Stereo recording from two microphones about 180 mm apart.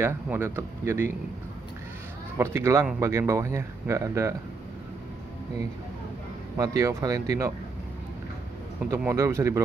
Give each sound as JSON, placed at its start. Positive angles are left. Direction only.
{"t": 0.0, "sound": "speech", "side_deg": -15}
{"t": 2.3, "sound": "speech", "side_deg": -15}
{"t": 6.5, "sound": "speech", "side_deg": -20}
{"t": 8.9, "sound": "speech", "side_deg": -15}